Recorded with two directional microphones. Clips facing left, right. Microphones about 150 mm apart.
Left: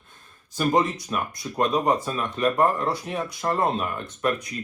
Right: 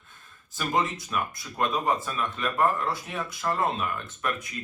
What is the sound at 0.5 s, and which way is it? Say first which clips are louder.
Speech: left 5 dB; 40° left (ahead or behind).